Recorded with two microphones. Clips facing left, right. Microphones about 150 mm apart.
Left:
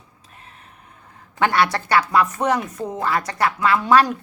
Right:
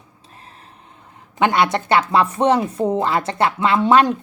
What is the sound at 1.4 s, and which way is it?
Speech, 20° right (ahead or behind).